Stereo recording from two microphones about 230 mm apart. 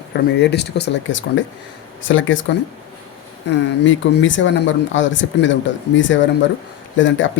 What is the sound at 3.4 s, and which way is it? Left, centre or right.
Speech, left.